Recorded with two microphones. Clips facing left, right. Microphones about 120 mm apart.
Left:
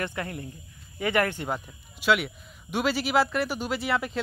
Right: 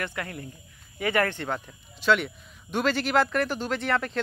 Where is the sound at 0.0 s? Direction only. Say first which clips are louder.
Left 1 dB; 25° left (ahead or behind).